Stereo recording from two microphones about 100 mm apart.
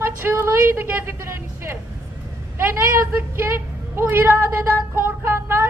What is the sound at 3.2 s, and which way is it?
Speech, 25° right (ahead or behind).